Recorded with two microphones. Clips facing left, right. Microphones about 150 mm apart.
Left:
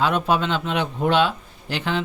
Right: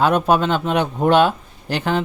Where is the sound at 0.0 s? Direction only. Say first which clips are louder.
Right 4 dB; 45° right (ahead or behind).